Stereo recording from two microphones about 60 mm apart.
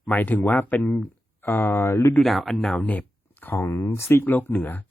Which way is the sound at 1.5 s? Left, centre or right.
Left.